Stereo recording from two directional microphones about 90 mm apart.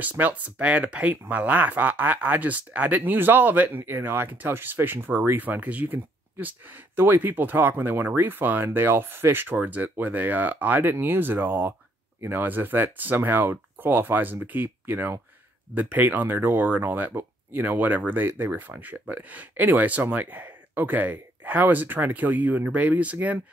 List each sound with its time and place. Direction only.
0.0 s speech: 20° right (ahead or behind)